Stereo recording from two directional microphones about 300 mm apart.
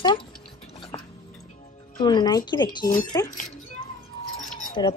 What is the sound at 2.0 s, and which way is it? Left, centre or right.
Speech, centre.